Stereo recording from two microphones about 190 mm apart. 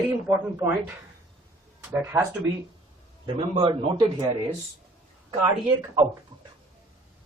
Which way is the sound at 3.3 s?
30° right (ahead or behind).